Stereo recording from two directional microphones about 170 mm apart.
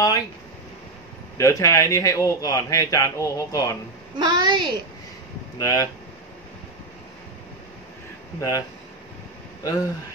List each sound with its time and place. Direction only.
1.4 s a man's voice: 20° left (ahead or behind)
4.2 s a woman's voice: 25° right (ahead or behind)
5.6 s a man's voice: 20° left (ahead or behind)
8.4 s a man's voice: 20° left (ahead or behind)